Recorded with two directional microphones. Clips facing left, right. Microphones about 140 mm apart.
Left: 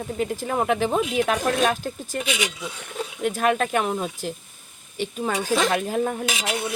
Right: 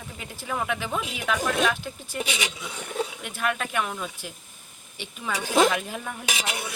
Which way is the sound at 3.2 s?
45° left (ahead or behind).